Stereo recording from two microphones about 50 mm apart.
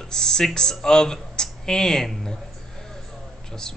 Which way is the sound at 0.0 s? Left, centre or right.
Centre.